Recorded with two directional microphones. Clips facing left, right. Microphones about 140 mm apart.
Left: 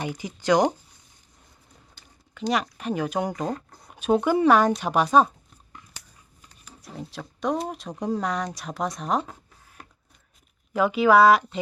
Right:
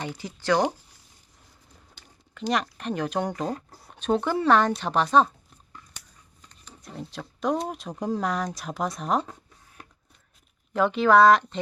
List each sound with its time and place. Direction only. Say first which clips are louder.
0.0 s speech: left 3 dB; 15° left (ahead or behind)
2.3 s speech: left 1 dB; centre (ahead or behind)
3.9 s speech: left 3 dB; 10° left (ahead or behind)
6.4 s speech: even; 5° left (ahead or behind)
10.8 s speech: left 1 dB; 5° left (ahead or behind)